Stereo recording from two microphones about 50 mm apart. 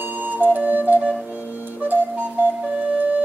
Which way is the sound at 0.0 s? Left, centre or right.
Right.